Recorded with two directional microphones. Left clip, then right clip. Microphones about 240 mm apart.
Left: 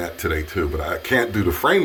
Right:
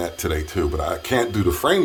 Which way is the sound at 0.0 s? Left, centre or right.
Centre.